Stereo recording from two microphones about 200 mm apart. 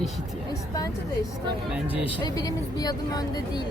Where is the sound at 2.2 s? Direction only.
20° left (ahead or behind).